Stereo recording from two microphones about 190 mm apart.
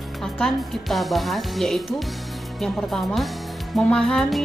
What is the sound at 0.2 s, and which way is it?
Speech, centre (ahead or behind).